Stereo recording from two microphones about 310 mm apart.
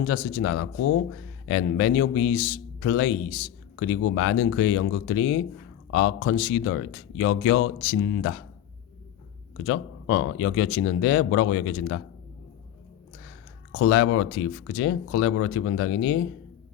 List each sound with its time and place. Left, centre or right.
0.1 s a man's voice: left
9.6 s a man's voice: left
13.7 s a man's voice: left